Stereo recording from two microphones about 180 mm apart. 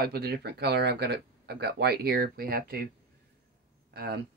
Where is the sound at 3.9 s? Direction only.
60° right (ahead or behind).